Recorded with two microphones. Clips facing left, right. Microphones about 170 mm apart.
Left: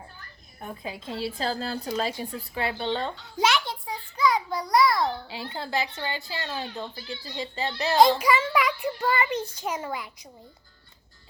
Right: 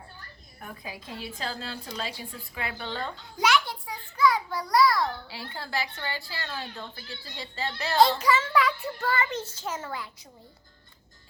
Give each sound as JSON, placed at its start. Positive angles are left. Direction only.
{"t": 0.6, "sound": "a woman's voice", "side_deg": 25}